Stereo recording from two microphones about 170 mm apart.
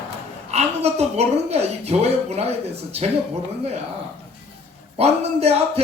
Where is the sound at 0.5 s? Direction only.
40° right (ahead or behind).